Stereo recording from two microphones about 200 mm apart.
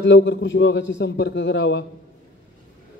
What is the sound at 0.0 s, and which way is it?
Speech, 65° left (ahead or behind).